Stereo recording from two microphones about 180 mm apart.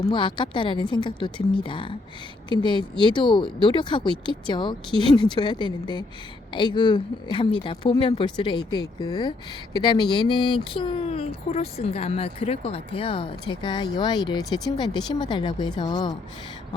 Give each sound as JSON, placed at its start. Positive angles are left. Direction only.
{"t": 0.1, "sound": "speech", "side_deg": 25}